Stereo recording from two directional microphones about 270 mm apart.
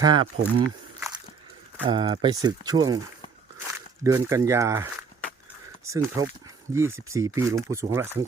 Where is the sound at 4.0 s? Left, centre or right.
Centre.